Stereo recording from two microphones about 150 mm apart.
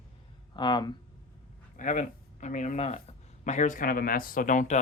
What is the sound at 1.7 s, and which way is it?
Speech, 55° left (ahead or behind).